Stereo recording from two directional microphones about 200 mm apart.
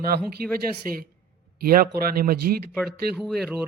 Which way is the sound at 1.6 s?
45° right (ahead or behind).